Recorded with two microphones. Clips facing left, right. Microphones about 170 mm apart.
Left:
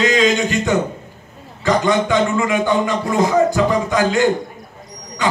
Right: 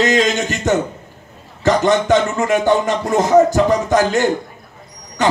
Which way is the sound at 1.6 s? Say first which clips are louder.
Right 2 dB; 45° right (ahead or behind).